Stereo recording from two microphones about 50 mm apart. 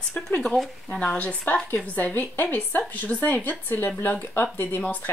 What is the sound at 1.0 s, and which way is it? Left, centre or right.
Speech, left.